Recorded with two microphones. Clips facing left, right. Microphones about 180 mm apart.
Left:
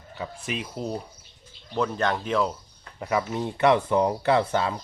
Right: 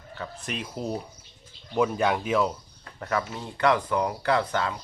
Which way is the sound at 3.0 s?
15° left (ahead or behind).